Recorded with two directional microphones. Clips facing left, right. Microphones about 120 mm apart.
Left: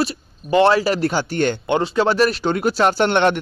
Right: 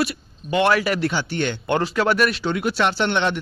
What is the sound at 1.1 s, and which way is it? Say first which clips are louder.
Speech: left 4 dB; 45° left (ahead or behind).